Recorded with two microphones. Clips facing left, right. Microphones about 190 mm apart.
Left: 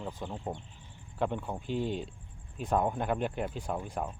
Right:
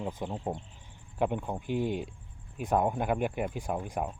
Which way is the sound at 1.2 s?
15° right (ahead or behind).